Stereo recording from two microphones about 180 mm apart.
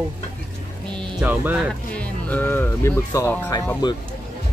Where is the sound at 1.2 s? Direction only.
5° right (ahead or behind).